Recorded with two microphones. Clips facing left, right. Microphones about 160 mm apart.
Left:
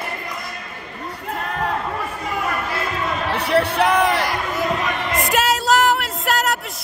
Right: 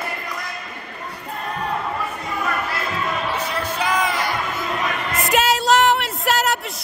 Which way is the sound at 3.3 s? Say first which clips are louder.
Left 6 dB; 65° left (ahead or behind).